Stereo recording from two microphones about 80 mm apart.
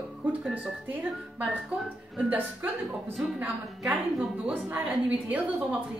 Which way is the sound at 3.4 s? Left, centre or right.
Centre.